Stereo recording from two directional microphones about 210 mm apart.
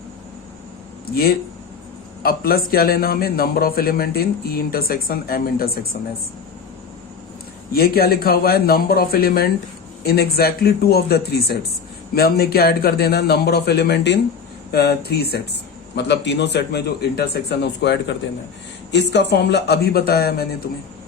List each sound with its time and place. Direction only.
1.0 s speech: 45° left (ahead or behind)
7.7 s speech: 45° left (ahead or behind)